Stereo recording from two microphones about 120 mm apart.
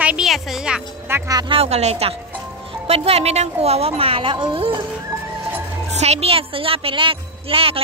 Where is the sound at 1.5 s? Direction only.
60° right (ahead or behind).